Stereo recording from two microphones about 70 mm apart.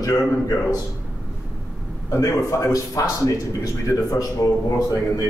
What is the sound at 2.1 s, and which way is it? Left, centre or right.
Speech, left.